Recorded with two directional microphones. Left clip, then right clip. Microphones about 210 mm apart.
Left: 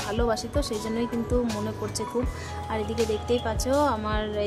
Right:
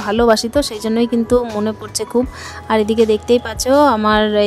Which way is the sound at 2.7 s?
45° right (ahead or behind).